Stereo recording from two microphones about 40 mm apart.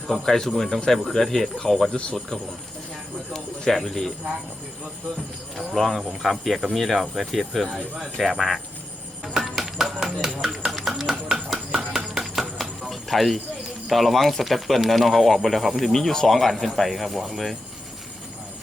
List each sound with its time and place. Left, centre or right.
0.1 s speech: centre
1.9 s speech: left
3.3 s speech: centre
5.5 s speech: centre
9.2 s music: centre
12.9 s a sound: centre
13.9 s speech: centre